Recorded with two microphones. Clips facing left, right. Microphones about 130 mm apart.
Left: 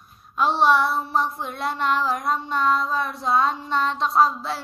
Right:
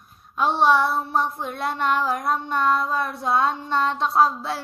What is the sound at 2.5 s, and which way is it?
A child's voice, 55° right (ahead or behind).